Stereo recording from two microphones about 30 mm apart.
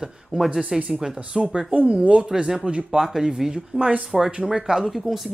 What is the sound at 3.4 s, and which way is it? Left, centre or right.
Speech, right.